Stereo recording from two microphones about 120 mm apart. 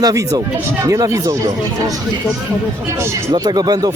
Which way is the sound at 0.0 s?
30° right (ahead or behind).